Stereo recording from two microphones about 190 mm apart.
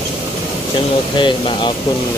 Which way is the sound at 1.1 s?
25° left (ahead or behind).